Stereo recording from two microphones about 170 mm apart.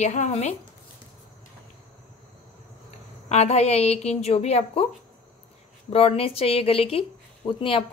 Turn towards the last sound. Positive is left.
turn(degrees=30)  # may be behind; listen again after turning